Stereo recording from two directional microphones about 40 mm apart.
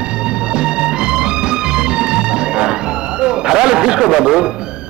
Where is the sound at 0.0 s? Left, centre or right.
Right.